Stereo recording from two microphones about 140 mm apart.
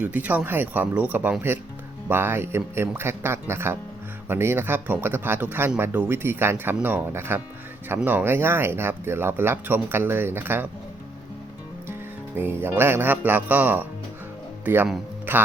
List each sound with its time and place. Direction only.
0.0 s speech: 10° right (ahead or behind)
12.4 s speech: 15° right (ahead or behind)